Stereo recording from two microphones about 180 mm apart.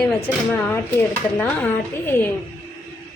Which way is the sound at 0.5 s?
10° left (ahead or behind).